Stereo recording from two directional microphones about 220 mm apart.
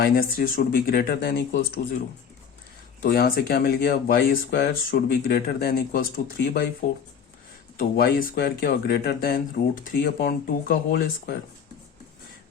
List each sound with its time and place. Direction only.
0.0 s speech: 40° left (ahead or behind)
3.0 s speech: 45° left (ahead or behind)
7.8 s speech: 45° left (ahead or behind)